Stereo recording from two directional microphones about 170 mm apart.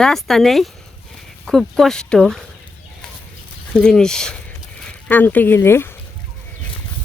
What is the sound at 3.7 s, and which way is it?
Speech, 5° left (ahead or behind).